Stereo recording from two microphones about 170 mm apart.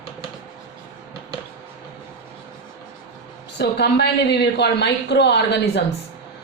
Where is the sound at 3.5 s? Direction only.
75° left (ahead or behind).